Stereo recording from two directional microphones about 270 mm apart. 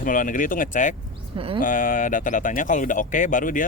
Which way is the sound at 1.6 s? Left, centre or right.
Left.